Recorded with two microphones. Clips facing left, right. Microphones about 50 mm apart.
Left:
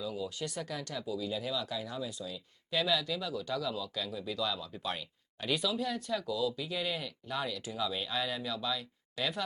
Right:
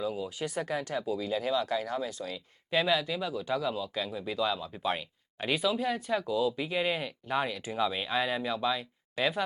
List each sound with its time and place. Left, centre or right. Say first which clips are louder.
0.0 s a sound: right 4 dB; right
0.3 s speech: right 3 dB; centre
0.6 s speech: right 6 dB; right
2.6 s speech: right 4 dB; right